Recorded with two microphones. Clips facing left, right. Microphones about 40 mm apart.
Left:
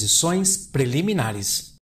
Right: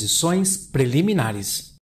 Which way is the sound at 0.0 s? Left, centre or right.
Centre.